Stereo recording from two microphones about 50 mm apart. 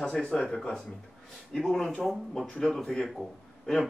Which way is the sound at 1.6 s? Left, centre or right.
Centre.